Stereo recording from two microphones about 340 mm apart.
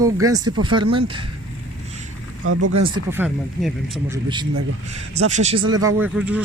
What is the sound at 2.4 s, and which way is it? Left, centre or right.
Speech, right.